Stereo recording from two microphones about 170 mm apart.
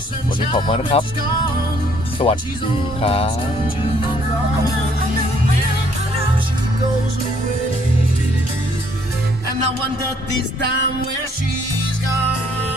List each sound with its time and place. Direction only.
0.5 s speech: 30° left (ahead or behind)
2.2 s speech: 35° left (ahead or behind)